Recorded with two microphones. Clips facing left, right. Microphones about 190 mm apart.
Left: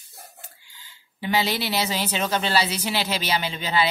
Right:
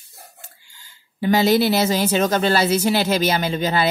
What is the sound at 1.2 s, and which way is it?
Speech, 45° right (ahead or behind).